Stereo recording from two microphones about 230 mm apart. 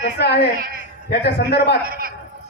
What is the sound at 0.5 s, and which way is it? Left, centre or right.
Speech, right.